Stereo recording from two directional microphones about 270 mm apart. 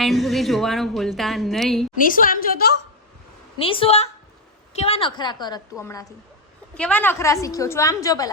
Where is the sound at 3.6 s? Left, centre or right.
Centre.